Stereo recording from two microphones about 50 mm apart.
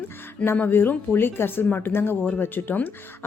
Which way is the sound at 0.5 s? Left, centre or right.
Left.